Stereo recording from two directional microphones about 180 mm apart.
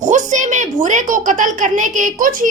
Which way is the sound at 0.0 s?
40° right (ahead or behind).